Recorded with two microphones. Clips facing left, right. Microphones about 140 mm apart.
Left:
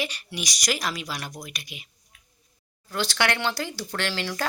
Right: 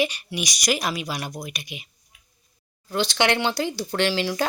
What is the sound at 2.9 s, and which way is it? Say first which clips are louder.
A woman's voice: right 4 dB; 20° right (ahead or behind).